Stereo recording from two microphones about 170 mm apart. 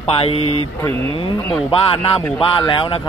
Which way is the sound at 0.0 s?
35° left (ahead or behind).